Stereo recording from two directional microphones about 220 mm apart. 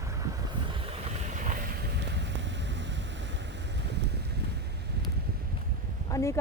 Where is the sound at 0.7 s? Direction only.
25° right (ahead or behind); by 4.6 s 50° right (ahead or behind).